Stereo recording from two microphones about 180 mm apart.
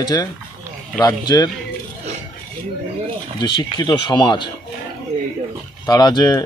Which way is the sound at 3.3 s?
25° left (ahead or behind).